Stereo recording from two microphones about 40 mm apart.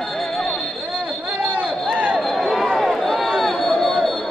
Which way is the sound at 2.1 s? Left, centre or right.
Centre.